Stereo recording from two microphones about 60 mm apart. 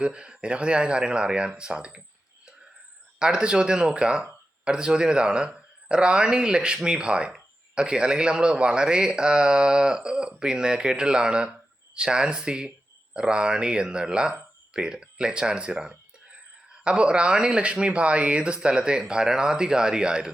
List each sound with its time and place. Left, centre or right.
0.0 s speech: centre
3.2 s speech: centre